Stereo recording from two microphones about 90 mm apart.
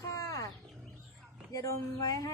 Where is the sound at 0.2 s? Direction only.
40° left (ahead or behind).